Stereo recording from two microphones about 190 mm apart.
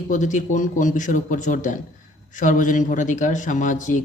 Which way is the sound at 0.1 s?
40° left (ahead or behind).